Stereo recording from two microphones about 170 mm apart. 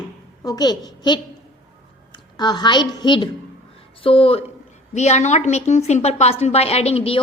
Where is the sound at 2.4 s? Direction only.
25° left (ahead or behind).